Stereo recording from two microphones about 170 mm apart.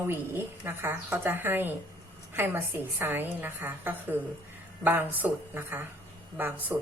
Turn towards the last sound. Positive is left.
turn(degrees=-10)  # may be behind; listen again after turning